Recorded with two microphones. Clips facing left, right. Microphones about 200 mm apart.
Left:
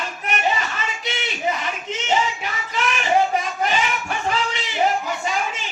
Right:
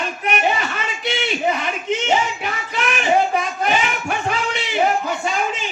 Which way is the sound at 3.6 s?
60° right (ahead or behind).